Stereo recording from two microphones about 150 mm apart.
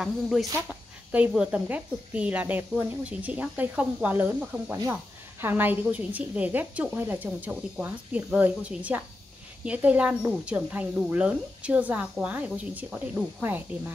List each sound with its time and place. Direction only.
0.0 s speech: centre (ahead or behind)